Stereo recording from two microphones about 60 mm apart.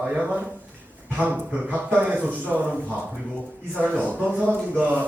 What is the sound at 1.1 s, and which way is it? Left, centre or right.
Speech, right.